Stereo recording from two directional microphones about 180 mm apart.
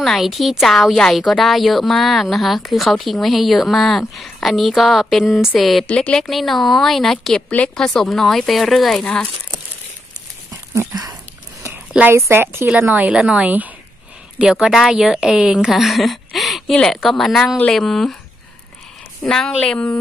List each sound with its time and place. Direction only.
0.0 s a woman's voice: centre (ahead or behind)
10.7 s a woman's voice: 15° right (ahead or behind); by 18.1 s centre (ahead or behind)
19.2 s a woman's voice: 5° left (ahead or behind)